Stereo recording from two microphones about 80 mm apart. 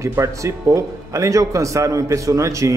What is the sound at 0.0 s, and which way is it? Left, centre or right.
A man's voice, right.